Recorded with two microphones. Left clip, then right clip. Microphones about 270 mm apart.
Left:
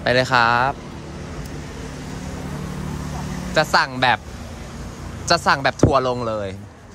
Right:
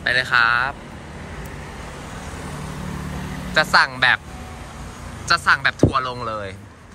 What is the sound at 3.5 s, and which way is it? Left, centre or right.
Speech, centre.